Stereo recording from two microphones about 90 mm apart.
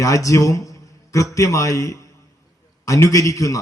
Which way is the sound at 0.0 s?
35° left (ahead or behind).